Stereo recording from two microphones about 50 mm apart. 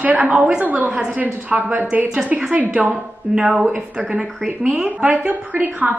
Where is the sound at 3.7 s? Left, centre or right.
Centre.